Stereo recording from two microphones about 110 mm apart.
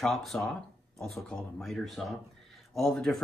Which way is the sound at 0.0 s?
5° left (ahead or behind).